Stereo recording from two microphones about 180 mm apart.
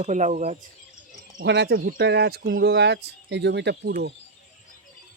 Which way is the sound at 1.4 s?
75° right (ahead or behind).